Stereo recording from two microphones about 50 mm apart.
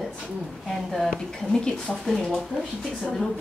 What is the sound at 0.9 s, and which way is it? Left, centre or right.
Speech, centre.